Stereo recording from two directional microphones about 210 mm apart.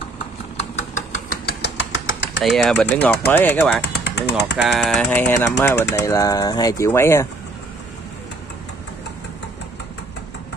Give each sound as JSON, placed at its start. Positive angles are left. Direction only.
{"t": 0.6, "sound": "a sound", "side_deg": 35}
{"t": 1.6, "sound": "engine", "side_deg": 60}
{"t": 2.4, "sound": "speech", "side_deg": 0}
{"t": 3.8, "sound": "speech", "side_deg": 55}
{"t": 4.6, "sound": "speech", "side_deg": 0}